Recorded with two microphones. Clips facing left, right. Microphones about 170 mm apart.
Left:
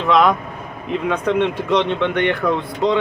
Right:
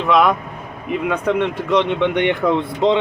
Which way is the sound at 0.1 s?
5° right (ahead or behind).